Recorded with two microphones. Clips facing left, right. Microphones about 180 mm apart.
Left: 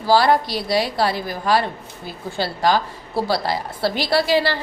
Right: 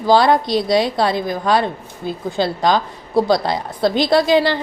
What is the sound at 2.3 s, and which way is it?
A woman's voice, 20° right (ahead or behind).